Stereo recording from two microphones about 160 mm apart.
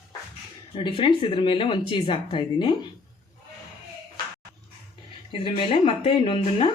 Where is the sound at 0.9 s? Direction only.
30° left (ahead or behind).